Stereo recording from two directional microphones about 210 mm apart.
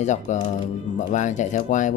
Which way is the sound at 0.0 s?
35° left (ahead or behind).